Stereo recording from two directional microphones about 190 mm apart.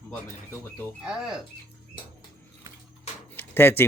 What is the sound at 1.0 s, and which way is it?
Speech, 5° right (ahead or behind).